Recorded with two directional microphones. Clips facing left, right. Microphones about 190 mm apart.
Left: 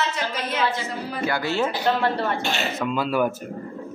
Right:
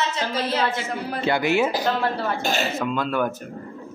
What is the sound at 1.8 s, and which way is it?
A woman's voice, centre (ahead or behind).